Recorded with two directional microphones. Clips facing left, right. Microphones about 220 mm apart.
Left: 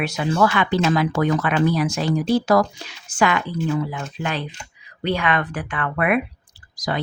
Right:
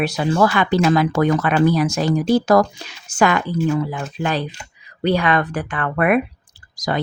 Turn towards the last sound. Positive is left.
turn(degrees=-45)  # may be behind; listen again after turning